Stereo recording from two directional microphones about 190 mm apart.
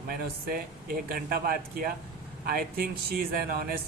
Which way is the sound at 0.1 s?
50° right (ahead or behind).